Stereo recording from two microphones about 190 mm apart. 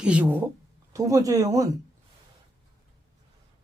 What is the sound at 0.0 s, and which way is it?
Speech, 5° right (ahead or behind).